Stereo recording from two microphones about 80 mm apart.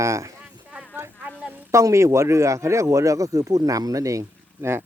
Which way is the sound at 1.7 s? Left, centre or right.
Right.